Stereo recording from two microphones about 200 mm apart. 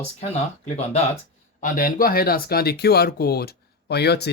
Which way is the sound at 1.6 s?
40° left (ahead or behind).